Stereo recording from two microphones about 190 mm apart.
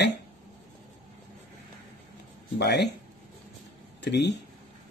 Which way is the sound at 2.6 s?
65° left (ahead or behind).